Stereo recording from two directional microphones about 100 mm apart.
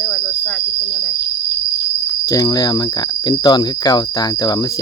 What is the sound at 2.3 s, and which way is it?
Speech, 40° left (ahead or behind).